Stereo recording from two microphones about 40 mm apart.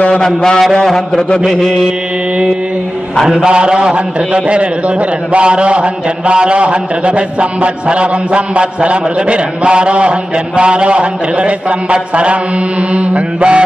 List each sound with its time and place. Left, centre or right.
0.1 s mantra: centre
3.3 s a man's voice: centre
12.9 s mantra: right